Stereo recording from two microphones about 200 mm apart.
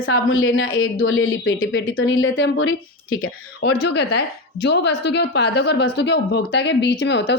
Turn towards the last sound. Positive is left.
turn(degrees=60)  # may be behind; listen again after turning